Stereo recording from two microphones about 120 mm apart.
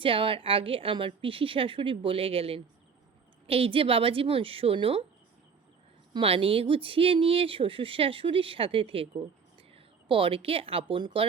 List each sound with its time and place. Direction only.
0.0 s speech: 45° right (ahead or behind)
6.1 s a woman's voice: 50° right (ahead or behind)